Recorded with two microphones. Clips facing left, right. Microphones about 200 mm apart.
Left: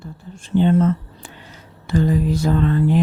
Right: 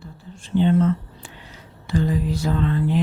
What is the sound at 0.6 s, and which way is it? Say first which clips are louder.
Speech: left 2 dB; 45° left (ahead or behind).